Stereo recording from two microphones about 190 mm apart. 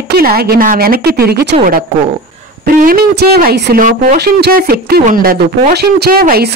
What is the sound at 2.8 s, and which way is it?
Speech, 55° right (ahead or behind).